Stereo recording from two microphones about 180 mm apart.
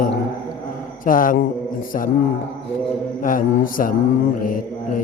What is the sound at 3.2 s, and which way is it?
Mantra, 50° left (ahead or behind).